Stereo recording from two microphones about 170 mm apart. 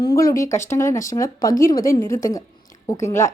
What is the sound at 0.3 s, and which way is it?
A woman's voice, 20° left (ahead or behind).